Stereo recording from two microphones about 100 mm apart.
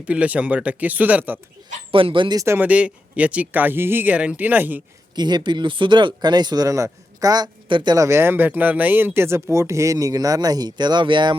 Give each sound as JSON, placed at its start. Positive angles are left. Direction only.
{"t": 0.0, "sound": "speech", "side_deg": -15}
{"t": 1.9, "sound": "speech", "side_deg": -60}
{"t": 2.3, "sound": "speech", "side_deg": -30}
{"t": 2.6, "sound": "speech", "side_deg": -15}
{"t": 5.1, "sound": "speech", "side_deg": -45}
{"t": 7.9, "sound": "speech", "side_deg": -30}